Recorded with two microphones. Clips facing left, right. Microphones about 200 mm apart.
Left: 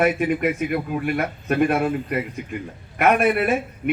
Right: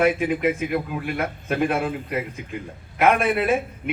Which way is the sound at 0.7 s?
50° left (ahead or behind).